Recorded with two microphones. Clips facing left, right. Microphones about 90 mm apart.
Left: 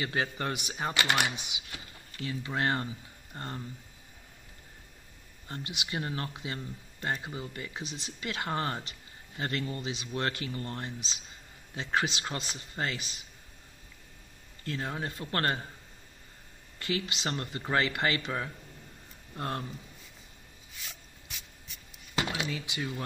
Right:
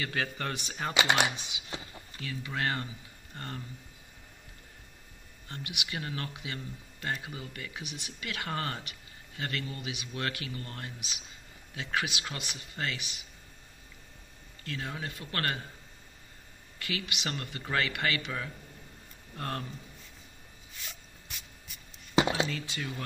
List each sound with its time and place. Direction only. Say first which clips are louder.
0.0 s speech: left 2 dB; 20° left (ahead or behind)
0.9 s speech: right 3 dB; 20° right (ahead or behind)
1.3 s speech: right 1 dB; 20° left (ahead or behind)
5.5 s speech: left 2 dB; 30° left (ahead or behind)
14.6 s speech: left 3 dB; 30° left (ahead or behind)
16.7 s speech: left 4 dB; 30° left (ahead or behind)
20.7 s a sound: even; centre (ahead or behind)
22.1 s a sound: right 6 dB; 25° right (ahead or behind)
22.5 s speech: left 1 dB; 15° left (ahead or behind)